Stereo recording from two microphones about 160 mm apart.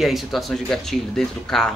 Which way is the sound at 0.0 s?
Centre (ahead or behind).